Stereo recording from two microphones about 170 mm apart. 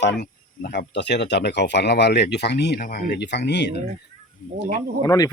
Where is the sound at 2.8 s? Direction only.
55° left (ahead or behind); by 3.8 s 90° left.